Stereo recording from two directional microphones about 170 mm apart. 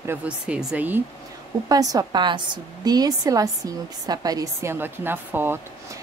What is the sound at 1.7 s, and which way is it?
A woman's voice, 20° right (ahead or behind).